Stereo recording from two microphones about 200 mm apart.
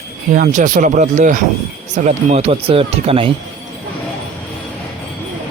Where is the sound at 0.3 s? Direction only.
45° right (ahead or behind).